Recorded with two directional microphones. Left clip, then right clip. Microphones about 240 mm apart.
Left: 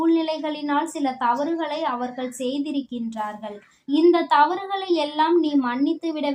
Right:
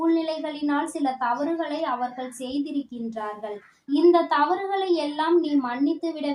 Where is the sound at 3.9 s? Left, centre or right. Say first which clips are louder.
Left 1 dB; left.